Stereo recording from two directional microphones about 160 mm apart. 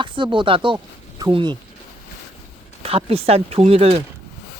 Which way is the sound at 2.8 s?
35° right (ahead or behind).